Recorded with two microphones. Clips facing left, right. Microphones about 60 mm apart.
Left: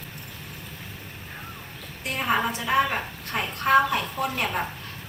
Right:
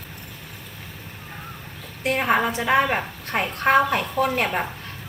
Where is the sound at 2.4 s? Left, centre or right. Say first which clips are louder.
Right 3 dB; right.